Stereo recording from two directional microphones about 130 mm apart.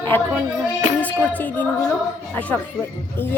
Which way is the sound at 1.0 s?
10° left (ahead or behind).